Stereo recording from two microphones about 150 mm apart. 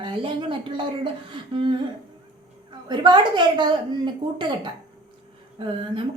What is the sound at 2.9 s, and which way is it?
Speech, 30° right (ahead or behind).